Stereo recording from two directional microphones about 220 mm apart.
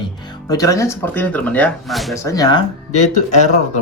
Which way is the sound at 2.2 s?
15° left (ahead or behind).